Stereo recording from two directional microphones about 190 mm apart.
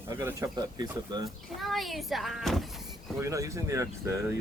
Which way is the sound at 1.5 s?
Centre (ahead or behind).